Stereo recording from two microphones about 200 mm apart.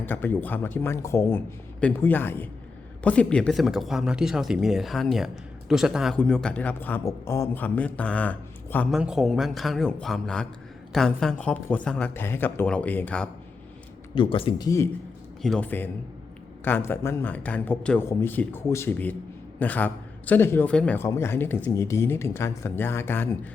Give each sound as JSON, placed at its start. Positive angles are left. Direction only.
{"t": 0.0, "sound": "a man's voice", "side_deg": 10}
{"t": 9.0, "sound": "a man's voice", "side_deg": -5}
{"t": 14.2, "sound": "speech", "side_deg": 25}
{"t": 15.4, "sound": "a man's voice", "side_deg": 5}